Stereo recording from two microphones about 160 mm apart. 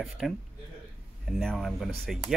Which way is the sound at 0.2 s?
Centre (ahead or behind).